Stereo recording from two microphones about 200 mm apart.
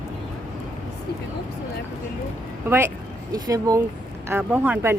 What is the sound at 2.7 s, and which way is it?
Speech, 10° right (ahead or behind).